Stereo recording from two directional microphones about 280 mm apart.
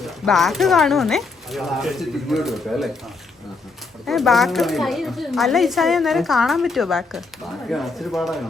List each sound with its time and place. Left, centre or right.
0.0 s speech: centre
4.0 s speech: centre